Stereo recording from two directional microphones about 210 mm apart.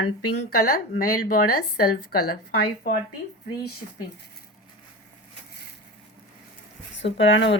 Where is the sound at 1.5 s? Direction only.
90° left.